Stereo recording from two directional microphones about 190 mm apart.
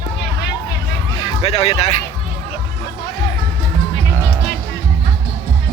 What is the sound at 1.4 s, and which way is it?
Speech, 30° left (ahead or behind).